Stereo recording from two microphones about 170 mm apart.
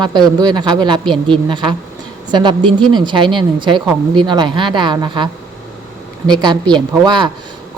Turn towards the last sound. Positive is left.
turn(degrees=-25)  # may be behind; listen again after turning